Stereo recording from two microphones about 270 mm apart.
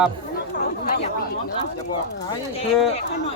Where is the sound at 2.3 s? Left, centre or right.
Left.